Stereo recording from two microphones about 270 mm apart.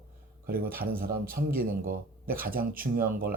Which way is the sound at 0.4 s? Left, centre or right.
Right.